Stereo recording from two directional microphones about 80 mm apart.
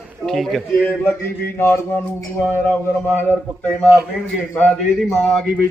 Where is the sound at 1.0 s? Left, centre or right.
Left.